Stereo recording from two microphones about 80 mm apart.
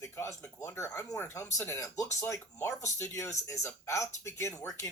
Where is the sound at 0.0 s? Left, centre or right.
Left.